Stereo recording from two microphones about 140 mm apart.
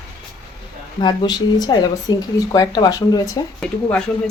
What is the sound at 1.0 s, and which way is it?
Speech, 30° left (ahead or behind).